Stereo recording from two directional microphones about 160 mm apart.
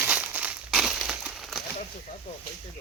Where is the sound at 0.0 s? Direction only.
10° right (ahead or behind).